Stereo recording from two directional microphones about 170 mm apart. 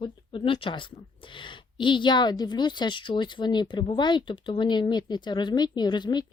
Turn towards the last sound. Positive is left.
turn(degrees=25)  # may be behind; listen again after turning